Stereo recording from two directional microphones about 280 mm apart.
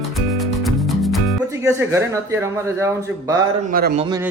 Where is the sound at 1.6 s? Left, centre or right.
Centre.